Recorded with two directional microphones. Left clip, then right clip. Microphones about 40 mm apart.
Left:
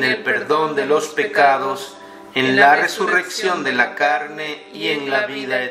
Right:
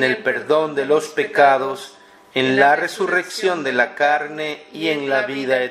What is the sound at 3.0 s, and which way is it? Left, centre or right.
Speech, centre.